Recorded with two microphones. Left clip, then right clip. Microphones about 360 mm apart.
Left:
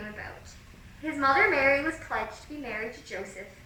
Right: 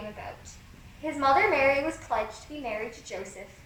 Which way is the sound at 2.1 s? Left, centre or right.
Centre.